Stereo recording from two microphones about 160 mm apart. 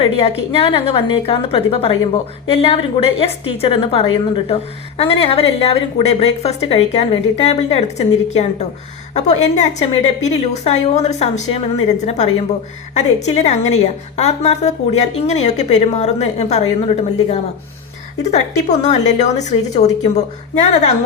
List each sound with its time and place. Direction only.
0.0 s a woman's voice: 35° left (ahead or behind)